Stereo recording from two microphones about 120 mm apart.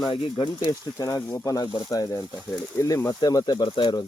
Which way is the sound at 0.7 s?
30° left (ahead or behind).